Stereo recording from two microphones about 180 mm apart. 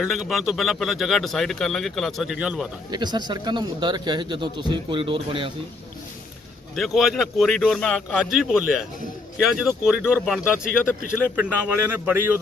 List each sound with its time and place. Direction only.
0.0 s speech: centre (ahead or behind)
2.9 s speech: 25° right (ahead or behind)
6.7 s speech: centre (ahead or behind)